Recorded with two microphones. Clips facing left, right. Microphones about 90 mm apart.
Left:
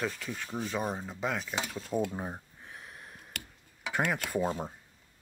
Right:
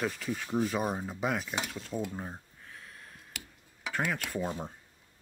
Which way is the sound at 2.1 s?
20° left (ahead or behind).